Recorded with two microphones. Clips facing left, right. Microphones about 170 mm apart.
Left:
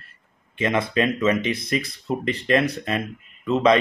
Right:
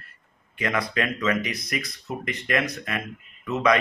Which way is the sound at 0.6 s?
25° left (ahead or behind).